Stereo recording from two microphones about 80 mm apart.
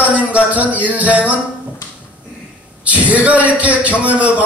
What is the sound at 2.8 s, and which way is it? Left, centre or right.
A man's voice, centre.